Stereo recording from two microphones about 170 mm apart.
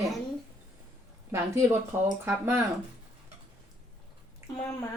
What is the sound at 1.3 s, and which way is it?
Speech, 15° right (ahead or behind).